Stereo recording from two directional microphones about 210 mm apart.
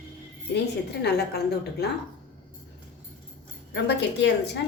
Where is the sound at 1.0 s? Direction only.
50° left (ahead or behind).